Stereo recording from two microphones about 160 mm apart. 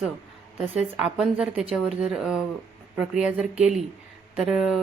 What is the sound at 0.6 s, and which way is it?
A woman's voice, 5° right (ahead or behind).